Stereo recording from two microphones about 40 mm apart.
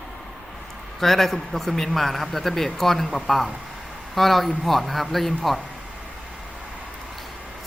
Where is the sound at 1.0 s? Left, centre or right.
Centre.